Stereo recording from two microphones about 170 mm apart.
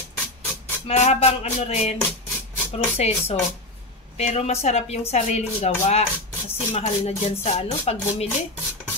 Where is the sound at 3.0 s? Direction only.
40° left (ahead or behind).